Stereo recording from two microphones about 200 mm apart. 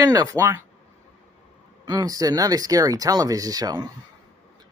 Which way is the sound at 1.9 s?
20° right (ahead or behind).